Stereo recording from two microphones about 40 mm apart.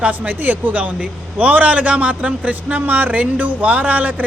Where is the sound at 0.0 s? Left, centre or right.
Right.